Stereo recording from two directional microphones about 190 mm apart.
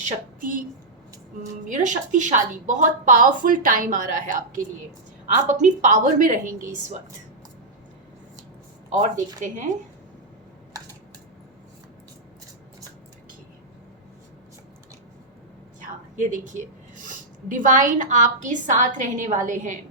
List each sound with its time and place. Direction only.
0.0 s a woman's voice: 40° right (ahead or behind)
1.6 s a woman's voice: 40° right (ahead or behind)
9.0 s a woman's voice: 40° right (ahead or behind)
16.1 s a woman's voice: 40° right (ahead or behind)